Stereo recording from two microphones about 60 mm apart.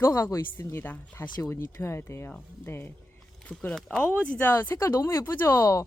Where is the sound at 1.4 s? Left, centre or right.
Left.